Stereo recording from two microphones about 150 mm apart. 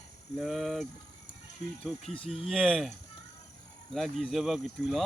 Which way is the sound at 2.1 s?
40° left (ahead or behind).